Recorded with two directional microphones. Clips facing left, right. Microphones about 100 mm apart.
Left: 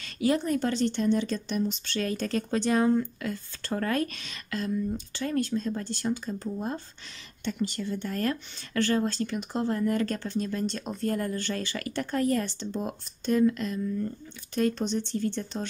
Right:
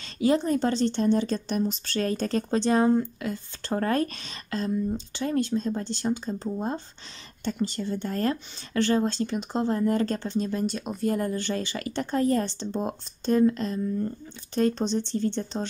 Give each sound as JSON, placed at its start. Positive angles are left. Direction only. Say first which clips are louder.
{"t": 0.0, "sound": "a woman's voice", "louder": "right 3 dB", "side_deg": -25}
{"t": 10.7, "sound": "speech", "louder": "right 3 dB", "side_deg": -10}
{"t": 11.1, "sound": "a woman's voice", "louder": "right 3 dB", "side_deg": -20}